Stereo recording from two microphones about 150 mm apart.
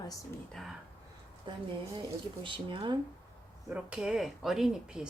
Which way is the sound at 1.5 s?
30° right (ahead or behind).